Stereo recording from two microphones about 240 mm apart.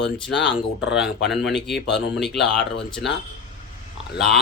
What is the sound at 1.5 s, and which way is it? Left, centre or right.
Speech, left.